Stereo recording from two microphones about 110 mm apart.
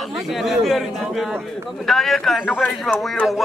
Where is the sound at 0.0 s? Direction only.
Centre (ahead or behind).